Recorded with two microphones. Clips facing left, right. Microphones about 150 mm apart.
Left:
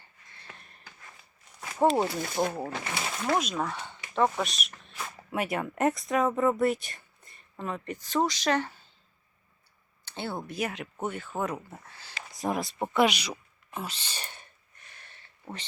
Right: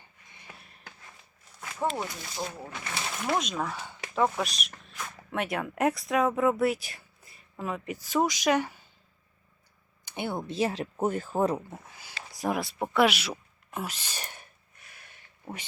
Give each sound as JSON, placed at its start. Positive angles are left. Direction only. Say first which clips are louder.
{"t": 0.0, "sound": "a sound", "louder": "even", "side_deg": -15}
{"t": 1.8, "sound": "speech", "louder": "left 7 dB", "side_deg": 35}
{"t": 2.1, "sound": "speech", "louder": "left 8 dB", "side_deg": 50}
{"t": 2.6, "sound": "speech", "louder": "left 6 dB", "side_deg": 30}
{"t": 3.2, "sound": "speech", "louder": "left 1 dB", "side_deg": 0}
{"t": 10.1, "sound": "speech", "louder": "right 2 dB", "side_deg": -15}
{"t": 11.7, "sound": "speech", "louder": "right 2 dB", "side_deg": -15}
{"t": 12.3, "sound": "a sound", "louder": "right 1 dB", "side_deg": 0}